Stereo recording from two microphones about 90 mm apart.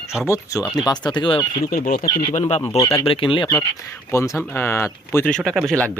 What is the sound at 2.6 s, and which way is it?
Speech, 35° left (ahead or behind).